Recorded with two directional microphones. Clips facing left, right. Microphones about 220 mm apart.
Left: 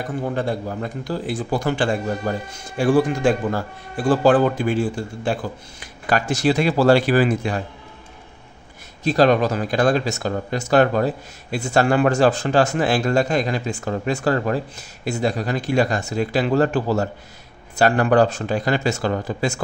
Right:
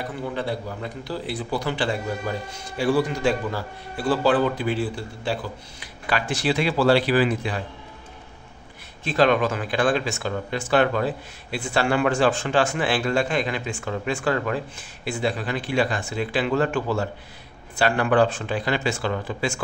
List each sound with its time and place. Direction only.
0.0 s a man's voice: 45° left (ahead or behind)
9.0 s speech: 40° left (ahead or behind)